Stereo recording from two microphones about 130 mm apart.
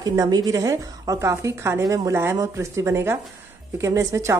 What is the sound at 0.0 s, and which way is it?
A woman's voice, 30° right (ahead or behind).